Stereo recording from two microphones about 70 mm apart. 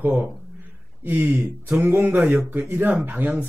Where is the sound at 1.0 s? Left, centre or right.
Right.